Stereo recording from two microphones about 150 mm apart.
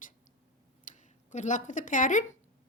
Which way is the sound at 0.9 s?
60° left (ahead or behind).